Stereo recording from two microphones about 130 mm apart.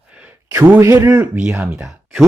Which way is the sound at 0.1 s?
10° right (ahead or behind).